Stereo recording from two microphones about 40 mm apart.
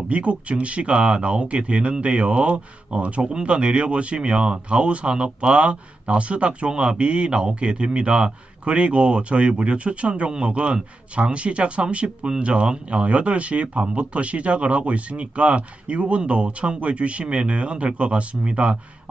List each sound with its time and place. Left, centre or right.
0.1 s speech: right